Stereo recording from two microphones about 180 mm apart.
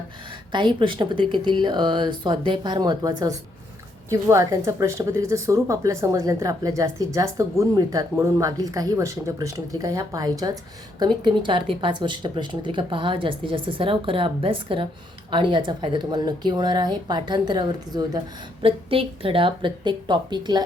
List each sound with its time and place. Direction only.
0.5 s speech: 25° right (ahead or behind)